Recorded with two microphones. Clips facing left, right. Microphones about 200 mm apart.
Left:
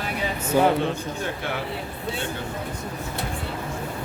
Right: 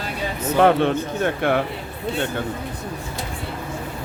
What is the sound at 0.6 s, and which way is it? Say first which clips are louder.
A man's voice: right 4 dB; 65° right (ahead or behind).